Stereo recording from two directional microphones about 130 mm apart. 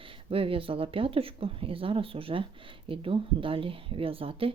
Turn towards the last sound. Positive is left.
turn(degrees=-45)  # may be behind; listen again after turning